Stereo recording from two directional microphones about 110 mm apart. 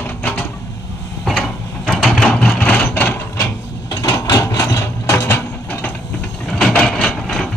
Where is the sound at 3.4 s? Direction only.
35° left (ahead or behind); by 7.5 s 5° left (ahead or behind).